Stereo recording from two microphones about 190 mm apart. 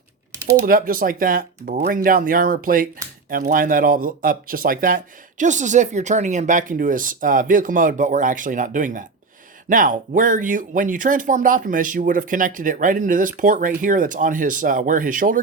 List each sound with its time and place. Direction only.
0.6 s speech: 50° right (ahead or behind)